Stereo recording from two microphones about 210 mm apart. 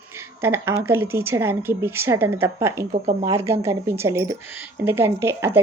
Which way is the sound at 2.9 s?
30° right (ahead or behind).